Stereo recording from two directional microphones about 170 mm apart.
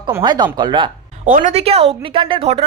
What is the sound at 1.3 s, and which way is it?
A woman's voice, 45° right (ahead or behind).